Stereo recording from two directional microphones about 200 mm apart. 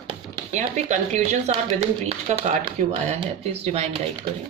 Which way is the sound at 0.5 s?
35° right (ahead or behind).